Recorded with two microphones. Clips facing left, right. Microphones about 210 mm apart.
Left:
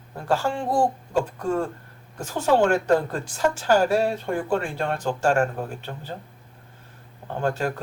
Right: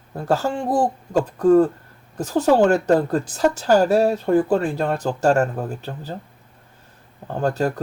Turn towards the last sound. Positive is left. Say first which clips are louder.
# right 4 dB
turn(degrees=-40)  # may be behind; listen again after turning